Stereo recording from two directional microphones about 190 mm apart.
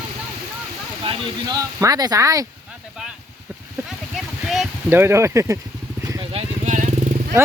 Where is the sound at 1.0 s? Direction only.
20° right (ahead or behind).